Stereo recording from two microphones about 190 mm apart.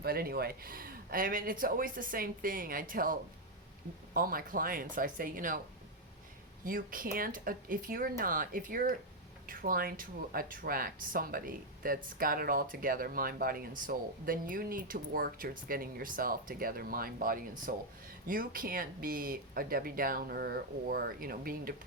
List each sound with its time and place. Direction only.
0.0 s speech: 55° right (ahead or behind)
6.7 s speech: 45° right (ahead or behind)